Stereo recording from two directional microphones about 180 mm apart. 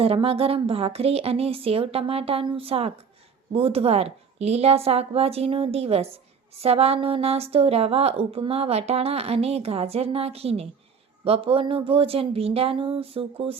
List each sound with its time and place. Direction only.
0.0 s a woman's voice: 30° right (ahead or behind)